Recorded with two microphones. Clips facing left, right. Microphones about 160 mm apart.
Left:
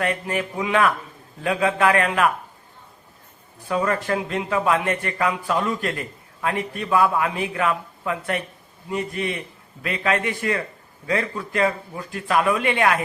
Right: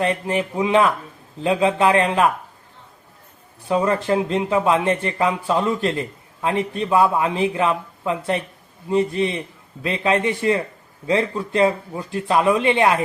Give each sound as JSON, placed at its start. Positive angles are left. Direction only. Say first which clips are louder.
{"t": 0.0, "sound": "a man's voice", "louder": "right 3 dB", "side_deg": -25}
{"t": 3.7, "sound": "a man's voice", "louder": "right 4 dB", "side_deg": -25}